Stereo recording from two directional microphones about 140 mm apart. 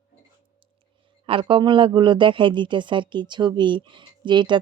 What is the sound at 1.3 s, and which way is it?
Speech, 40° right (ahead or behind).